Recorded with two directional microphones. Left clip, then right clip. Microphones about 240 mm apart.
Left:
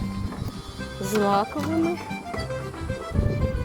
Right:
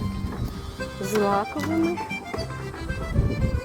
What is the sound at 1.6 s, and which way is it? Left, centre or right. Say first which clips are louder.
Speech: even; centre.